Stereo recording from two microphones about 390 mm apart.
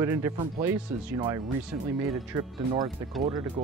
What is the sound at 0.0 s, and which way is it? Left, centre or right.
Speech, centre.